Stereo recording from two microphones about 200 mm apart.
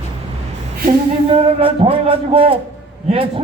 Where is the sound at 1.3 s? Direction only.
25° right (ahead or behind).